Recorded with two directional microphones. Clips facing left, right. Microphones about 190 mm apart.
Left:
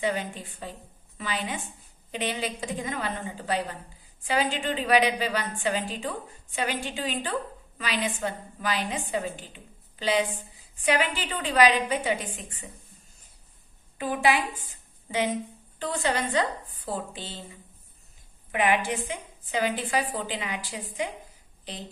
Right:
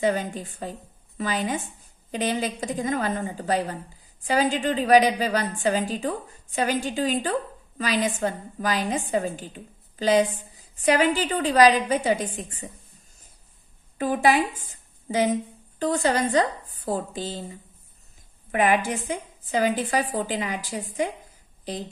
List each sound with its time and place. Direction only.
0.0 s a woman's voice: 45° right (ahead or behind)
13.9 s a woman's voice: 45° right (ahead or behind)